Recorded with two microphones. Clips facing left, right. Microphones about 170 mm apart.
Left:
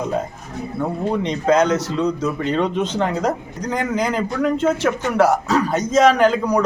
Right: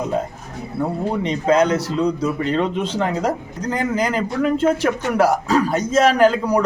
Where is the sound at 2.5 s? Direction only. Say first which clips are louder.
Even; centre (ahead or behind).